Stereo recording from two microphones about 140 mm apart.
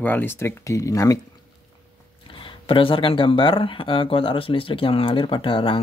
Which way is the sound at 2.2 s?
40° left (ahead or behind).